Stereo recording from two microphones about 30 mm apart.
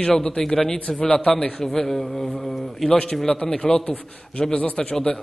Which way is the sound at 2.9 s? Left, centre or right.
Left.